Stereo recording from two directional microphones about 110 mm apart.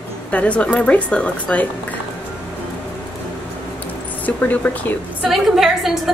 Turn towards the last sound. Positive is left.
turn(degrees=0)  # may be behind; listen again after turning